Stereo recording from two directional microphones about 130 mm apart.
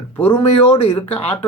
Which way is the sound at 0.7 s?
50° left (ahead or behind).